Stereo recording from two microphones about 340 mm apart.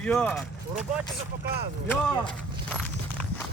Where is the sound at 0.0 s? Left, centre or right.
Centre.